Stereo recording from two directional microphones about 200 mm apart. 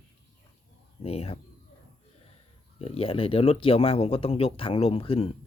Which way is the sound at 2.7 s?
30° left (ahead or behind).